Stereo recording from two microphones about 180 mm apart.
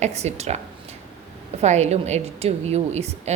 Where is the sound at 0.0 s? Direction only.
40° right (ahead or behind).